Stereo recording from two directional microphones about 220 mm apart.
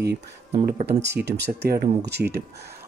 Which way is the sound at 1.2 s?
50° right (ahead or behind).